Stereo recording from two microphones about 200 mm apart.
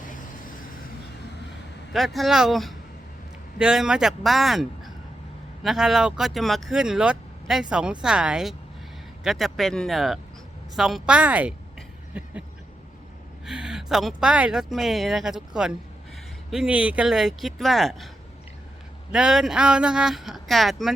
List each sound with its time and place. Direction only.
1.9 s speech: centre (ahead or behind)
5.6 s speech: centre (ahead or behind)
13.4 s speech: 5° right (ahead or behind)
19.1 s speech: 5° right (ahead or behind)